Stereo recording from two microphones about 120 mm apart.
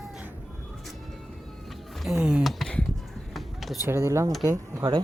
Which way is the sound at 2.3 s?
Centre (ahead or behind).